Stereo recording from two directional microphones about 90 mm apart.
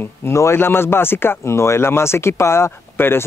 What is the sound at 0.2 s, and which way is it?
Speech, 30° left (ahead or behind).